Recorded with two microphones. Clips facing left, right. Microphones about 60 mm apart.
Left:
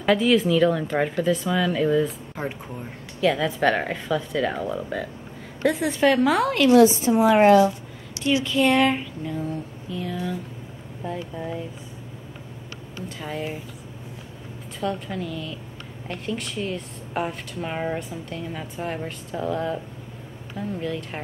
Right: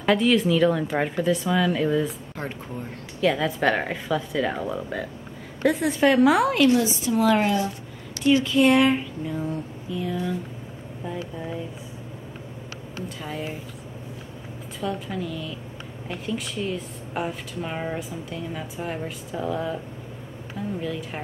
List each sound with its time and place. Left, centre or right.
0.0 s a woman's voice: centre
2.3 s speech: centre
3.2 s a woman's voice: centre
6.9 s speech: left
7.2 s a woman's voice: centre
8.5 s a woman's voice: centre
13.2 s a woman's voice: centre
14.8 s a woman's voice: centre